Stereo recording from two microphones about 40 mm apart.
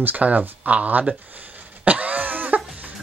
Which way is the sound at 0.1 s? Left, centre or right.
Right.